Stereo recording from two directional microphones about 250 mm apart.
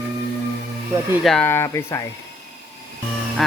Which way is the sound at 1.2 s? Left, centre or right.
Centre.